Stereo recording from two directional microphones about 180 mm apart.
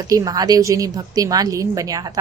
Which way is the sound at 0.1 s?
20° right (ahead or behind).